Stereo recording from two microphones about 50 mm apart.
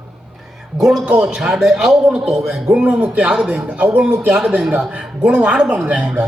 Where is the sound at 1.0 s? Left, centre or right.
Right.